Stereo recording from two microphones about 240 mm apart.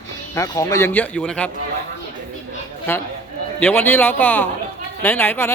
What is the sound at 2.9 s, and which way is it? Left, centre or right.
A woman's voice, centre.